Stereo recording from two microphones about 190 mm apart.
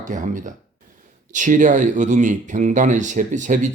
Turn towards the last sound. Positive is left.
turn(degrees=-40)  # may be behind; listen again after turning